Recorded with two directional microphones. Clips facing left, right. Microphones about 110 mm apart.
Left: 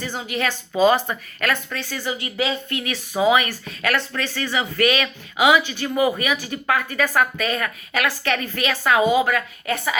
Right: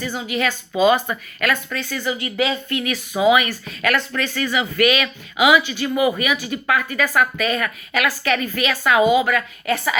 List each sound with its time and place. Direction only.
0.9 s speech: 35° left (ahead or behind)
9.0 s a woman's voice: 70° right (ahead or behind)
9.2 s speech: 35° left (ahead or behind)